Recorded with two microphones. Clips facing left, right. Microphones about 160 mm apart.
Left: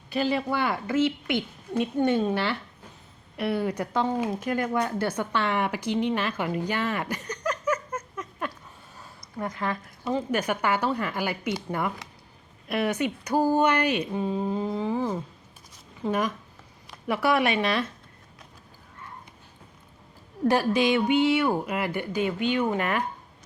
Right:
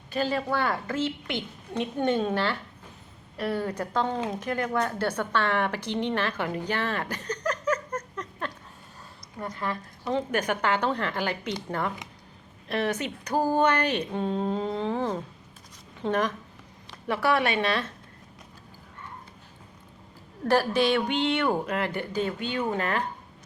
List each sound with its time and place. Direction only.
0.1 s a woman's voice: 10° left (ahead or behind)
20.5 s a woman's voice: 15° left (ahead or behind)